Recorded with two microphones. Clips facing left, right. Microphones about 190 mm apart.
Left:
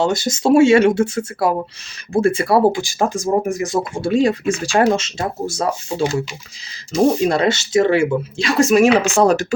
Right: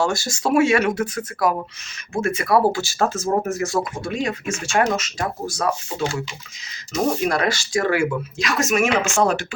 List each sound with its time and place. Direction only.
0.0 s speech: 20° left (ahead or behind)
2.7 s speech: 15° left (ahead or behind)
3.9 s speech: 30° left (ahead or behind)